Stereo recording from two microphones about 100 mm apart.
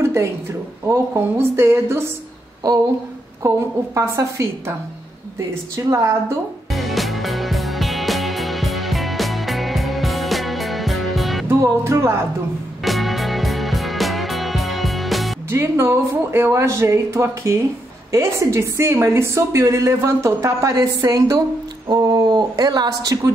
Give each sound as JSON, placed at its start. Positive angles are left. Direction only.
{"t": 0.0, "sound": "a sound", "side_deg": -25}
{"t": 0.8, "sound": "a woman's voice", "side_deg": -25}
{"t": 3.4, "sound": "a woman's voice", "side_deg": -30}
{"t": 5.8, "sound": "a woman's voice", "side_deg": -30}
{"t": 6.7, "sound": "music", "side_deg": 0}
{"t": 11.4, "sound": "music", "side_deg": -25}
{"t": 12.8, "sound": "music", "side_deg": 0}
{"t": 15.5, "sound": "a woman's voice", "side_deg": -25}